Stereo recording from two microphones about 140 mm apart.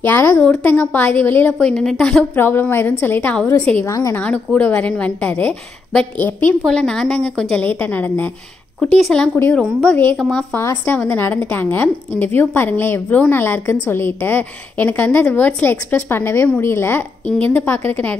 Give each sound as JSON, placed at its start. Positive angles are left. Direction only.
{"t": 0.0, "sound": "a woman's voice", "side_deg": 15}
{"t": 2.3, "sound": "a woman's voice", "side_deg": 15}
{"t": 3.8, "sound": "a woman's voice", "side_deg": 25}
{"t": 4.1, "sound": "a woman's voice", "side_deg": 10}
{"t": 8.7, "sound": "a woman's voice", "side_deg": 5}